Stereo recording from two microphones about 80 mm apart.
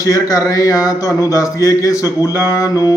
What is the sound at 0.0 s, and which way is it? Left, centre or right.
A man's voice, left.